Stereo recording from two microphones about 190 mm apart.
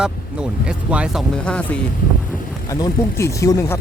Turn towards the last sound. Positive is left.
turn(degrees=15)  # may be behind; listen again after turning